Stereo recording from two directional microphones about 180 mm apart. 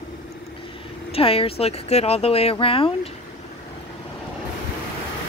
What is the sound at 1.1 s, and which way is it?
Speech, 30° left (ahead or behind).